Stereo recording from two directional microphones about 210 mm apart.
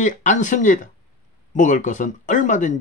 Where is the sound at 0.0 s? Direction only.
35° left (ahead or behind).